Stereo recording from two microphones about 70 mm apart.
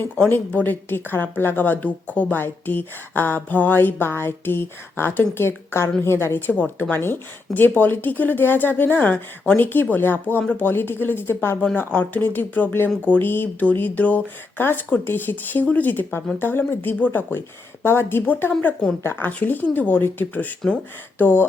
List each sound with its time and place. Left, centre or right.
0.3 s a woman's voice: left